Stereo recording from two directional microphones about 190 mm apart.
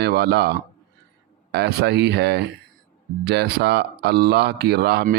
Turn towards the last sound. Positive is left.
turn(degrees=-55)  # may be behind; listen again after turning